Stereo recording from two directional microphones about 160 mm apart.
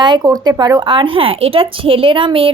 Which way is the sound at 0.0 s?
25° right (ahead or behind).